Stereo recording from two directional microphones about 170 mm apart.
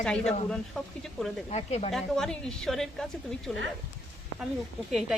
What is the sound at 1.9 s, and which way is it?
A woman's voice, 5° left (ahead or behind).